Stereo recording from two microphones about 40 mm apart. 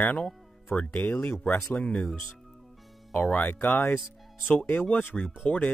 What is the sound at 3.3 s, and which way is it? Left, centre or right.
Speech, left.